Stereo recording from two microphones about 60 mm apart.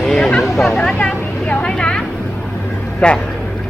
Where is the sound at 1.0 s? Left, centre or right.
Centre.